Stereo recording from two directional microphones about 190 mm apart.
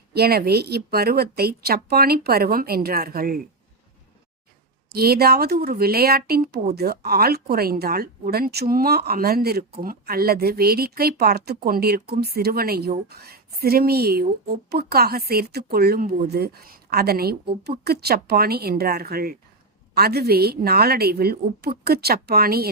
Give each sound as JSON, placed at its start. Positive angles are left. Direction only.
{"t": 0.1, "sound": "speech", "side_deg": -55}
{"t": 4.9, "sound": "speech", "side_deg": -55}